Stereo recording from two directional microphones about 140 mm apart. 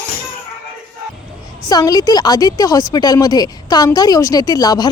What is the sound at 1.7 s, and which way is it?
Speech, 25° left (ahead or behind).